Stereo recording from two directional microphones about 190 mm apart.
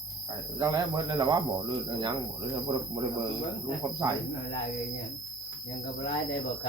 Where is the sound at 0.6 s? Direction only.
20° right (ahead or behind).